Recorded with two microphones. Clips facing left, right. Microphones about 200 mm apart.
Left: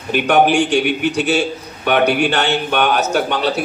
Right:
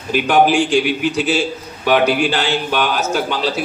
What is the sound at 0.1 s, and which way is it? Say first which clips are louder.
A man's voice: even; 60° left (ahead or behind).